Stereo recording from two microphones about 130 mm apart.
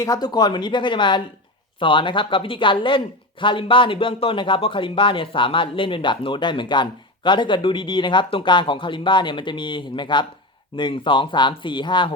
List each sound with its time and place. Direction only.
0.0 s speech: 30° left (ahead or behind)